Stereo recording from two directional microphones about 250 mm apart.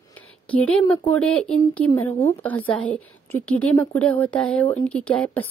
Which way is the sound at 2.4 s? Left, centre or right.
Centre.